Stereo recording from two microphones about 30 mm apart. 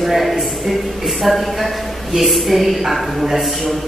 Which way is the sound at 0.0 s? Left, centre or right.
Centre.